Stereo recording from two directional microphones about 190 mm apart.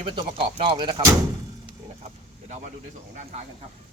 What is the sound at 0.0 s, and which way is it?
Speech, 25° right (ahead or behind).